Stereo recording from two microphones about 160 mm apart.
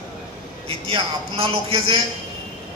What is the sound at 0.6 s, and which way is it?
A man's voice, 35° right (ahead or behind).